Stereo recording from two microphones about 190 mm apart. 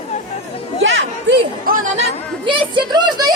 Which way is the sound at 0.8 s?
75° right (ahead or behind).